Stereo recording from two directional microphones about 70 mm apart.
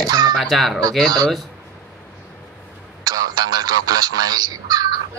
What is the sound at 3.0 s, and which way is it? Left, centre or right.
Speech, right.